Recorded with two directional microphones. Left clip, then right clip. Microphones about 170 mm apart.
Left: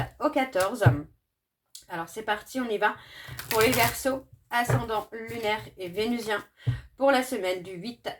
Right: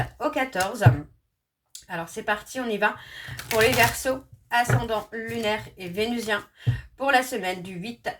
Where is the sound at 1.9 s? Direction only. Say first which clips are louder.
Right 3 dB; 35° left (ahead or behind).